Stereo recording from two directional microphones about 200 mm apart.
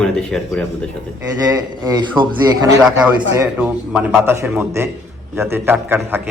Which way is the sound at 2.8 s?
5° right (ahead or behind).